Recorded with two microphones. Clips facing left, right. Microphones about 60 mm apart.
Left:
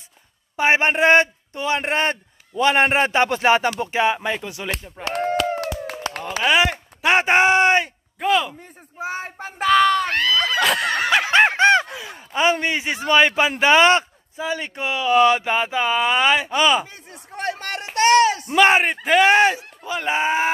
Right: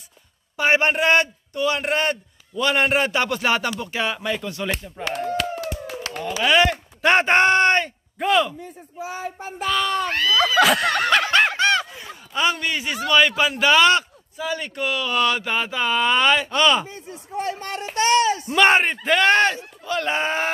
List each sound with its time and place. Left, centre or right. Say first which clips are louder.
0.6 s a man's voice: left 2 dB; left
5.1 s run: left 4 dB; left
6.4 s speech: right 1 dB; centre
8.9 s speech: left 2 dB; left
10.6 s a sound: right 5 dB; centre
11.0 s snicker: left 2 dB; centre; by 11.8 s left
12.3 s a man's voice: left 3 dB; left; by 16.8 s centre
17.1 s speech: even; left
18.5 s speech: right 2 dB; centre